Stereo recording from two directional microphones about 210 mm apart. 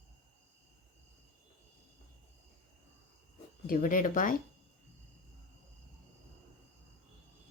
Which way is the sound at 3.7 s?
40° left (ahead or behind).